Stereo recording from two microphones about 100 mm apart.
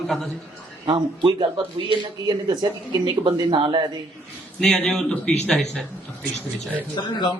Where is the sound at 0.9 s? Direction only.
60° right (ahead or behind).